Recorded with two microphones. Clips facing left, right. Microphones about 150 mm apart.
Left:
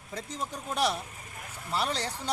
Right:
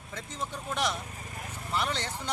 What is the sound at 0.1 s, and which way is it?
Speech, 35° left (ahead or behind).